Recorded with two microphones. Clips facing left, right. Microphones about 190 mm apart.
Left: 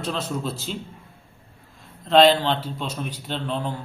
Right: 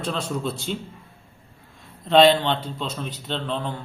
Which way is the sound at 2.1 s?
Centre (ahead or behind).